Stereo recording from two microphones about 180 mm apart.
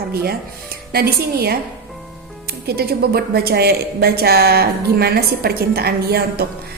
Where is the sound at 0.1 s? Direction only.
60° right (ahead or behind).